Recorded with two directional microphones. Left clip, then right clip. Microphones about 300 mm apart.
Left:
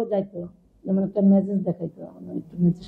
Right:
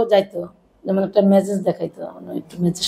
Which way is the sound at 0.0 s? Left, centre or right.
Centre.